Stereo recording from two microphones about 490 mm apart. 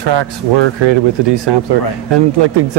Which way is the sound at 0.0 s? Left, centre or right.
Right.